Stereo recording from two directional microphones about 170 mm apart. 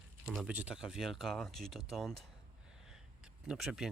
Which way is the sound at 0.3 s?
5° right (ahead or behind).